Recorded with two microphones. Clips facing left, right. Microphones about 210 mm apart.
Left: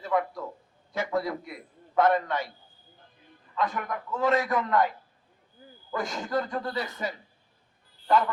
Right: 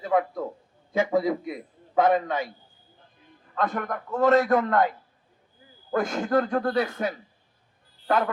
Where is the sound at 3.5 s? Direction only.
55° right (ahead or behind).